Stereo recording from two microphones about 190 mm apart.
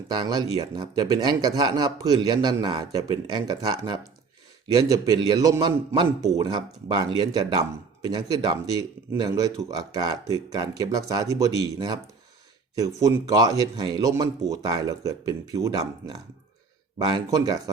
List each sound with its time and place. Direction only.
0.1 s a man's voice: 25° right (ahead or behind)